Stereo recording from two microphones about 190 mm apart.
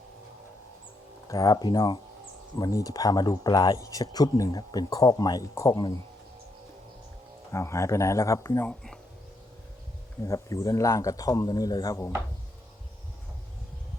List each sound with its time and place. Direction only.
1.3 s speech: 20° left (ahead or behind)
7.5 s a man's voice: 15° left (ahead or behind)
10.2 s a man's voice: 15° left (ahead or behind)